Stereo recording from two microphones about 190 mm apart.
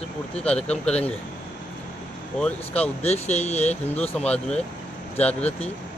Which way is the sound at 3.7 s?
5° left (ahead or behind).